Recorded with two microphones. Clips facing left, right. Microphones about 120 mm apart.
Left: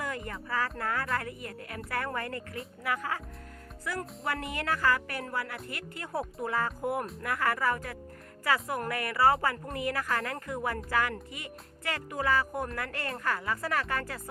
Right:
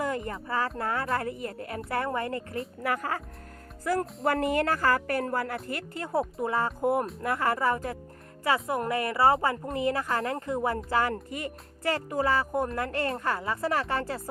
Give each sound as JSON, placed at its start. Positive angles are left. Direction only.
{"t": 0.0, "sound": "music", "side_deg": -25}
{"t": 0.8, "sound": "speech", "side_deg": -25}
{"t": 2.8, "sound": "speech", "side_deg": -45}